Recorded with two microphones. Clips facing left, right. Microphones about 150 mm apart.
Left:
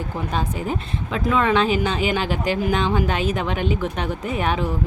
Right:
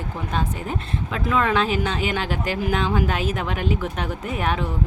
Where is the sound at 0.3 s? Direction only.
Centre (ahead or behind).